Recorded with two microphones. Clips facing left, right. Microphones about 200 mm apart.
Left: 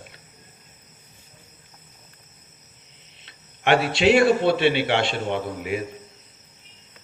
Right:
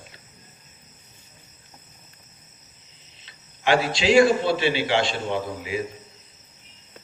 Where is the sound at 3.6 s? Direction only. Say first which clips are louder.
Left 2 dB; 60° left (ahead or behind).